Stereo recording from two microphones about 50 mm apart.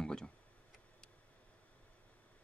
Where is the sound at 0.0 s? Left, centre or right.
Centre.